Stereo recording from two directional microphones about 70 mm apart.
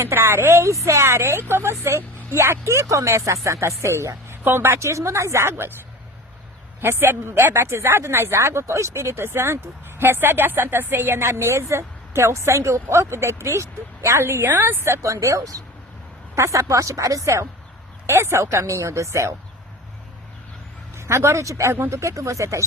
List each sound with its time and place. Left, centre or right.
0.0 s a woman's voice: right
6.8 s a woman's voice: right
14.8 s a woman's voice: right
20.9 s a woman's voice: right